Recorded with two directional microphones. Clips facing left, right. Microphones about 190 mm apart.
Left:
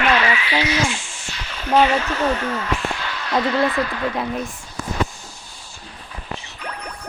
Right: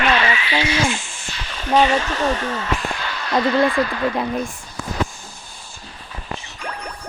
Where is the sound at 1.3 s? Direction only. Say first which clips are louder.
Right 1 dB; 30° right (ahead or behind).